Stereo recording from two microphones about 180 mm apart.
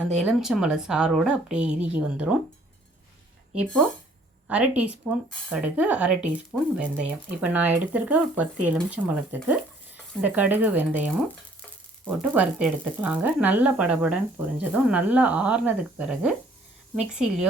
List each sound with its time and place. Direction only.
0.3 s speech: centre (ahead or behind)
4.4 s speech: 5° right (ahead or behind)